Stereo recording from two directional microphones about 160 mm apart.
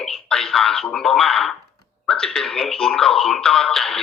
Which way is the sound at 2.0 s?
5° left (ahead or behind).